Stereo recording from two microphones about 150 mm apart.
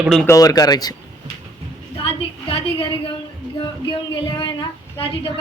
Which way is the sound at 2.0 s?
40° left (ahead or behind).